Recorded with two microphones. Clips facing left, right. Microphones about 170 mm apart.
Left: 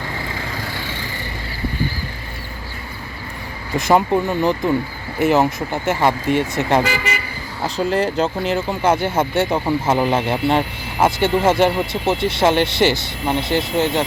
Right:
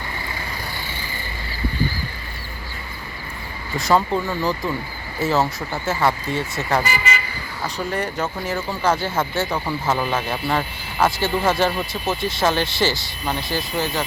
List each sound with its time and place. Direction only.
0.3 s vehicle: 90° left
3.8 s speech: 20° left (ahead or behind)
6.8 s speech: 75° left (ahead or behind)
7.6 s speech: 25° left (ahead or behind)